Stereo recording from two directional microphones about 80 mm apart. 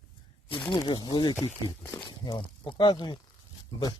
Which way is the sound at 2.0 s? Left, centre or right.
Left.